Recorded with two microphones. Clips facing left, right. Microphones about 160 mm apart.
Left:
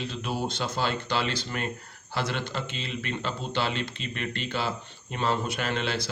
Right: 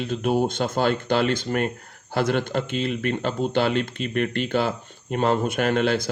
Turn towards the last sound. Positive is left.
turn(degrees=-50)  # may be behind; listen again after turning